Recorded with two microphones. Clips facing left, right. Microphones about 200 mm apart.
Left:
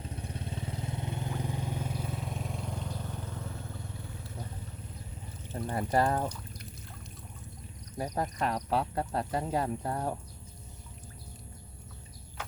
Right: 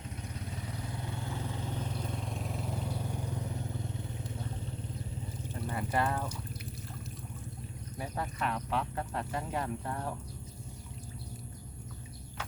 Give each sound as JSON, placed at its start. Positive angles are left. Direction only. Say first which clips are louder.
{"t": 0.2, "sound": "vehicle", "louder": "left 3 dB", "side_deg": 30}
{"t": 5.5, "sound": "speech", "louder": "left 4 dB", "side_deg": 40}
{"t": 7.9, "sound": "speech", "louder": "left 5 dB", "side_deg": 40}